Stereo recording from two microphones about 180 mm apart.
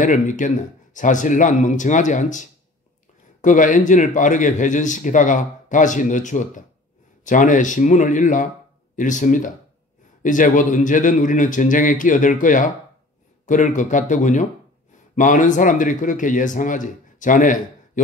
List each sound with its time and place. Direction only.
0.0 s a man's voice: 45° left (ahead or behind)